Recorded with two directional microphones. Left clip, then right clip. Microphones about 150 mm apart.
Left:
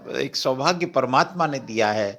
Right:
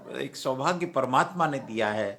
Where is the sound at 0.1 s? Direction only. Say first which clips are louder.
Left 7 dB; 40° left (ahead or behind).